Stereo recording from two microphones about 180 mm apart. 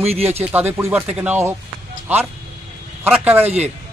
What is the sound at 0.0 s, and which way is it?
Speech, 35° right (ahead or behind).